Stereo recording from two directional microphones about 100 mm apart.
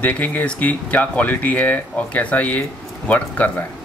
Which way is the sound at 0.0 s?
15° left (ahead or behind).